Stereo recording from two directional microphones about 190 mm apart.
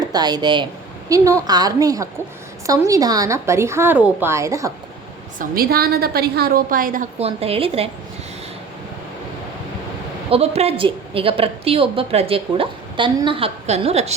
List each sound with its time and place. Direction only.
0.0 s a woman's voice: 20° right (ahead or behind)
5.4 s a woman's voice: 50° right (ahead or behind)
7.2 s a woman's voice: 30° right (ahead or behind)
10.2 s a woman's voice: 30° right (ahead or behind)